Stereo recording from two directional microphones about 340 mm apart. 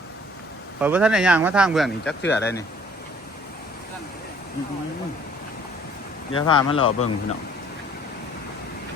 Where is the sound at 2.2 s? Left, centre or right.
Left.